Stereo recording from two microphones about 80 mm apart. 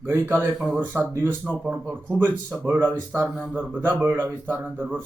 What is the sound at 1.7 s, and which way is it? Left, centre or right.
Speech, centre.